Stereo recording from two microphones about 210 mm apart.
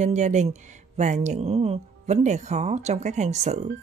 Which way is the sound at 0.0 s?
35° right (ahead or behind).